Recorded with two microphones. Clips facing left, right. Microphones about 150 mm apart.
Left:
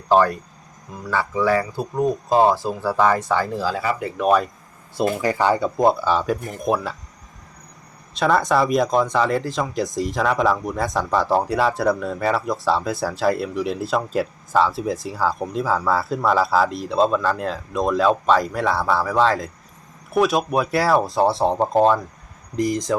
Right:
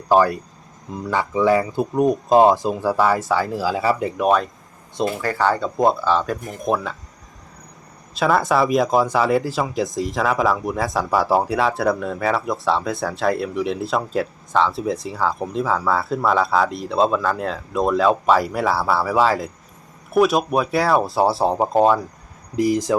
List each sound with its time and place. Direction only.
0.1 s speech: 10° right (ahead or behind)
3.8 s speech: 25° right (ahead or behind)
4.2 s speech: 5° left (ahead or behind)
5.2 s speech: 15° left (ahead or behind)
6.4 s speech: centre (ahead or behind)
8.1 s speech: 5° right (ahead or behind)